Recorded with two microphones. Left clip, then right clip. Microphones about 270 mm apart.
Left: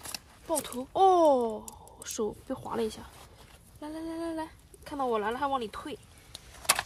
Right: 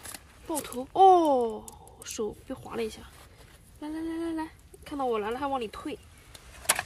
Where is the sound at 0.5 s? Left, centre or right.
Centre.